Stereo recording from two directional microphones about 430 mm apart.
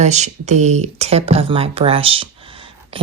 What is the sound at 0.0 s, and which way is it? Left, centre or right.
Speech, centre.